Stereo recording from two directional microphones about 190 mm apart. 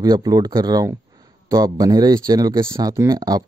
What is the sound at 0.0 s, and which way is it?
Speech, 20° right (ahead or behind).